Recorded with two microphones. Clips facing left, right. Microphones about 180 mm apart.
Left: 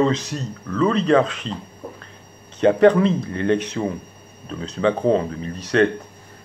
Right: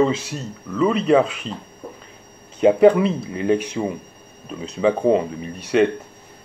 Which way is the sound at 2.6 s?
10° right (ahead or behind).